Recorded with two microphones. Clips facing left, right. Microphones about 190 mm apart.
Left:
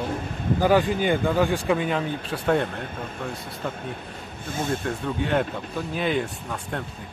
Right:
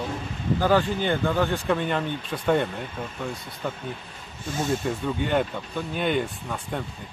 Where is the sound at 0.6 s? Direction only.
15° left (ahead or behind).